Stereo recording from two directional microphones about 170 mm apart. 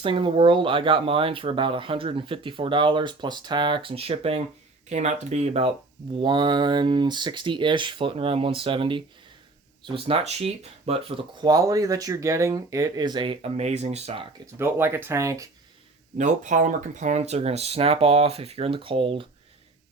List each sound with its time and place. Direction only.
0.0 s speech: 30° right (ahead or behind)
6.1 s speech: 30° right (ahead or behind)
14.6 s speech: 15° right (ahead or behind)
16.1 s speech: 45° right (ahead or behind)